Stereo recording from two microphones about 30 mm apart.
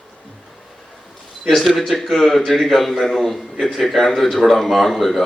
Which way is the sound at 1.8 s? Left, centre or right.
Centre.